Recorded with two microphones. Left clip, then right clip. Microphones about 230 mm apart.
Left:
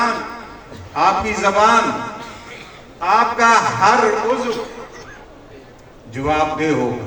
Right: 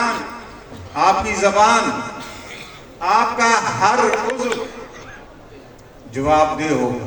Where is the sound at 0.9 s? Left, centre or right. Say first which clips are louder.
Even; left.